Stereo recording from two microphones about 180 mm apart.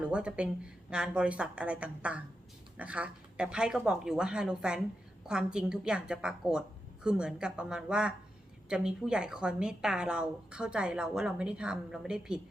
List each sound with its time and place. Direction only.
0.0 s a woman's voice: 5° right (ahead or behind)